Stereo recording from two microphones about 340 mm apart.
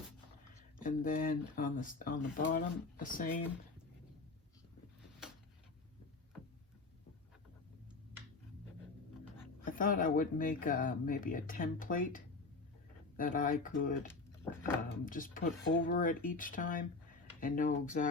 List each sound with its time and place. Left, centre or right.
0.8 s speech: left
9.6 s speech: left